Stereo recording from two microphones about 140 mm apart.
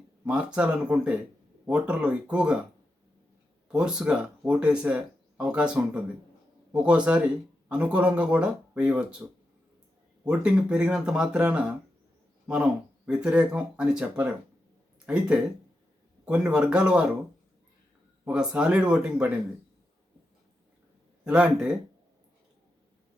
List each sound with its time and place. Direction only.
0.3 s speech: 10° right (ahead or behind)
3.7 s speech: 5° right (ahead or behind)
10.2 s speech: 5° right (ahead or behind)
18.3 s speech: 5° right (ahead or behind)
21.2 s speech: 5° right (ahead or behind)